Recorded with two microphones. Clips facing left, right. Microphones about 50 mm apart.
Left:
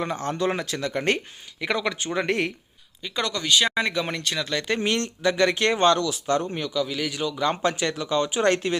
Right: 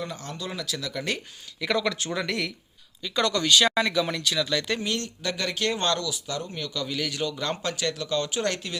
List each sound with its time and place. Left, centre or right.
0.0 s speech: left
1.6 s a man's voice: centre
2.1 s speech: left
3.0 s a man's voice: centre
3.8 s speech: left
4.4 s speech: left
4.8 s speech: left
6.7 s a man's voice: centre
7.5 s speech: left
8.4 s speech: left